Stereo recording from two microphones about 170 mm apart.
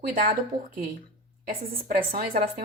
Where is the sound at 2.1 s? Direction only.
60° right (ahead or behind).